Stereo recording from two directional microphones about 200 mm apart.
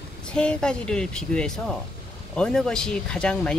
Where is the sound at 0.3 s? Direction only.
5° left (ahead or behind).